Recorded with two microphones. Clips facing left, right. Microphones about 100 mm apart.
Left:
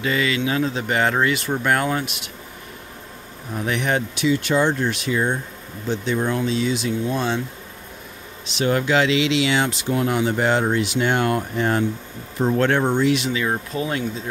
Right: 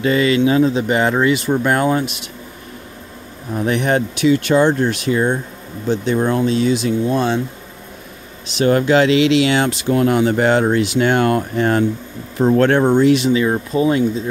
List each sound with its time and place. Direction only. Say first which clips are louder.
0.0 s speech: right 7 dB; 35° right (ahead or behind)
3.6 s speech: right 5 dB; 40° right (ahead or behind)
4.1 s speech: right 7 dB; 65° right (ahead or behind)
8.5 s speech: right 6 dB; 50° right (ahead or behind)
12.5 s speech: right 6 dB; 45° right (ahead or behind); by 14.0 s 25° right (ahead or behind)